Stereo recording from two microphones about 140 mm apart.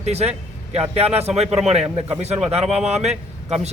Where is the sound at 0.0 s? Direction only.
50° right (ahead or behind).